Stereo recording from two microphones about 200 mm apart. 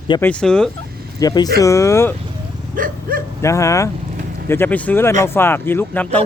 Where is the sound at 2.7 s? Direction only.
45° right (ahead or behind).